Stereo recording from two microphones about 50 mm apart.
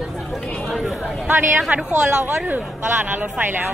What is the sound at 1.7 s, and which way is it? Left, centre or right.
Speech, right.